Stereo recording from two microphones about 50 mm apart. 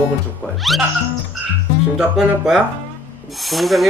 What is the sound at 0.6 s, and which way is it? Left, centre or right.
Speech, centre.